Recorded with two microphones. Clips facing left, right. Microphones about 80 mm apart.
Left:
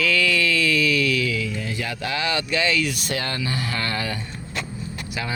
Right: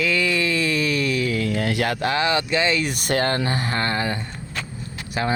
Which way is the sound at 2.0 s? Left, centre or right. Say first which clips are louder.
Right 2 dB; right.